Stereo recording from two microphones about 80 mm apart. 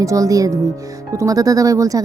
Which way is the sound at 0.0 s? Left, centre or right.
Right.